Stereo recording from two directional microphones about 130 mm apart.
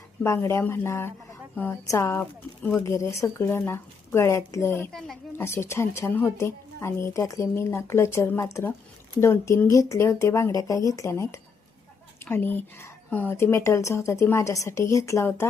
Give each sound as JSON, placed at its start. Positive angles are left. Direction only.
{"t": 0.2, "sound": "a woman's voice", "side_deg": 20}
{"t": 4.9, "sound": "speech", "side_deg": 0}
{"t": 5.3, "sound": "a woman's voice", "side_deg": 20}